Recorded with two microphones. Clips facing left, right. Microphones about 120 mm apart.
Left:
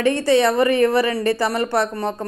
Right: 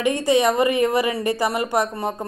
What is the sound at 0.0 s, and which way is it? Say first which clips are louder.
A woman's voice: left 2 dB; 15° right (ahead or behind).